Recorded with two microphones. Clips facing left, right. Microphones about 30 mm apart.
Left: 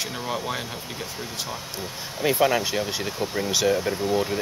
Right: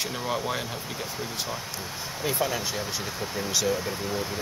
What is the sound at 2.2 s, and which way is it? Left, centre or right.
Speech, left.